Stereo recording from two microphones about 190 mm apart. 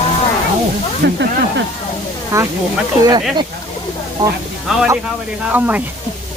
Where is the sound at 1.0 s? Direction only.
65° right (ahead or behind).